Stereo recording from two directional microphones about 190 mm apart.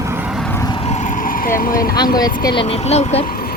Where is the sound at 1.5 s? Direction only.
45° left (ahead or behind).